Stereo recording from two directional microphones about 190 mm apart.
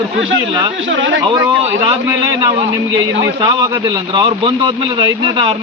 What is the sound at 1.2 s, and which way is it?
Speech, 25° right (ahead or behind).